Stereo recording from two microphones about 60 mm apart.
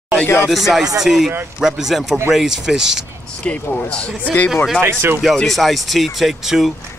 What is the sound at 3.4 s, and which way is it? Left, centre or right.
Speech, centre.